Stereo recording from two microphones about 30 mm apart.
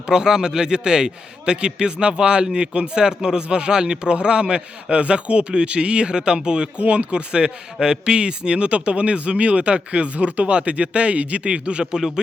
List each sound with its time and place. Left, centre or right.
0.0 s a man's voice: right
3.5 s a man's voice: right
6.7 s speech: right
7.1 s speech: right